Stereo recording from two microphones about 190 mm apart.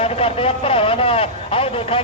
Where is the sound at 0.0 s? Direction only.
30° left (ahead or behind).